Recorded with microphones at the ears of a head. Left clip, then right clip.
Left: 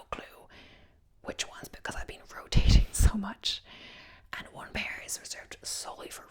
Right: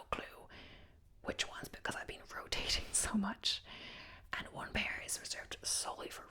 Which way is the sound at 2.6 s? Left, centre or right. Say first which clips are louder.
Left 5 dB; left.